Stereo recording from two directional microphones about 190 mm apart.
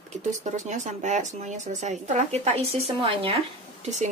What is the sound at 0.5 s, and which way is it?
Speech, 40° right (ahead or behind).